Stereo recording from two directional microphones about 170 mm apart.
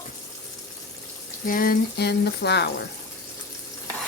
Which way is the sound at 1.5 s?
60° left (ahead or behind).